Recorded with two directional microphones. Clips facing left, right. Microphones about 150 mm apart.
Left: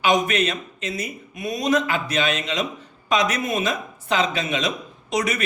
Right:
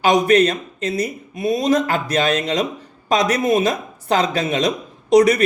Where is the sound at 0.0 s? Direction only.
40° right (ahead or behind).